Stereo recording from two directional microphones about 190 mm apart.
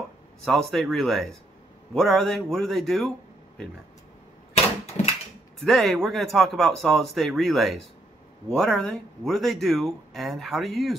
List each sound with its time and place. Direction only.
0.5 s speech: centre (ahead or behind)
5.0 s a sound: 35° left (ahead or behind)
5.6 s speech: centre (ahead or behind)